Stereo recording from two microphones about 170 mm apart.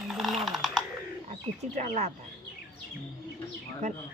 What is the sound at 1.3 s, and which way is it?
Speech, 40° right (ahead or behind).